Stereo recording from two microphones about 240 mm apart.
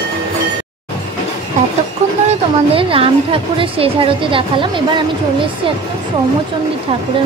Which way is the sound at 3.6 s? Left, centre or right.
Right.